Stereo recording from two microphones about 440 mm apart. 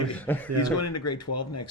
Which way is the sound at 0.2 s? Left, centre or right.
Centre.